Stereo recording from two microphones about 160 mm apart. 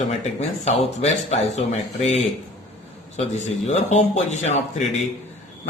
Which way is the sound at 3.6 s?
45° left (ahead or behind).